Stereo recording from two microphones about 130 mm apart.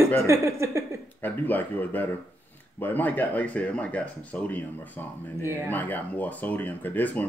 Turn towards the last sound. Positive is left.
turn(degrees=10)  # may be behind; listen again after turning